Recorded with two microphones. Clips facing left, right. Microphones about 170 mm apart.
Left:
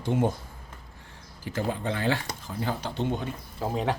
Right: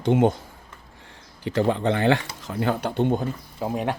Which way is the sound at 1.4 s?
75° right (ahead or behind).